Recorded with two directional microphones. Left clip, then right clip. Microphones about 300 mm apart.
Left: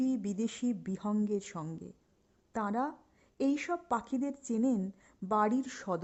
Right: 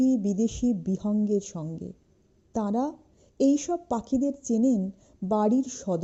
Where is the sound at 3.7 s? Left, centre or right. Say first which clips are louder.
Right 5 dB; centre.